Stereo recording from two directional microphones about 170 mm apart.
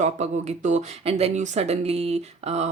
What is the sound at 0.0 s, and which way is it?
Speech, 45° right (ahead or behind).